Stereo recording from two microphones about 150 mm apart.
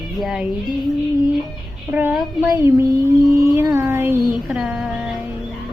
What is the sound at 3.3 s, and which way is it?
Music, 20° right (ahead or behind).